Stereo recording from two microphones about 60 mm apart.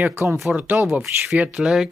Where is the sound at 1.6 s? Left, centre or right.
Centre.